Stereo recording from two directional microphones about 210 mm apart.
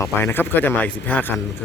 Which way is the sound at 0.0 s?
10° left (ahead or behind).